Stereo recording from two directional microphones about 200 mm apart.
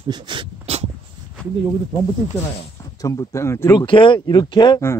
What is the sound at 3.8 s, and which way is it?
Speech, 25° left (ahead or behind).